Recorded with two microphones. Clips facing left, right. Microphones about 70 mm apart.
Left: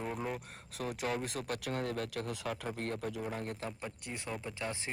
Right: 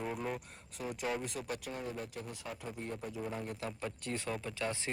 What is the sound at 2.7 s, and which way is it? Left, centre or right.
Speech, left.